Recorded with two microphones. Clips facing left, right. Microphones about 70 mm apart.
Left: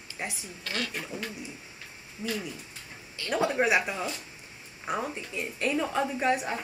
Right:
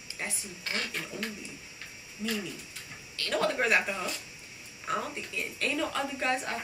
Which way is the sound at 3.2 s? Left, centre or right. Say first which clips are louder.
Left 2 dB; centre.